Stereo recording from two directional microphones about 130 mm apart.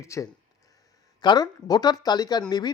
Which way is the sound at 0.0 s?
25° left (ahead or behind).